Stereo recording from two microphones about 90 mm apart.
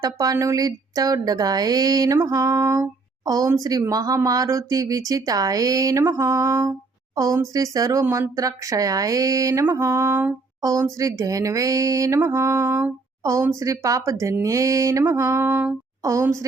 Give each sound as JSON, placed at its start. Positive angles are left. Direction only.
{"t": 0.0, "sound": "speech", "side_deg": -40}
{"t": 3.2, "sound": "speech", "side_deg": -40}
{"t": 10.6, "sound": "speech", "side_deg": -35}
{"t": 13.2, "sound": "speech", "side_deg": -35}
{"t": 16.0, "sound": "speech", "side_deg": -35}